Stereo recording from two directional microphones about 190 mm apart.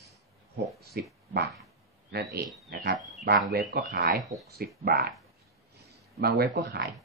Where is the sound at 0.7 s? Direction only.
55° right (ahead or behind).